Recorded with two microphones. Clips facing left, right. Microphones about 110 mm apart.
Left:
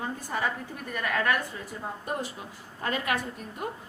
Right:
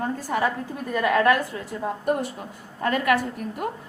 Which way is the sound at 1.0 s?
90° right.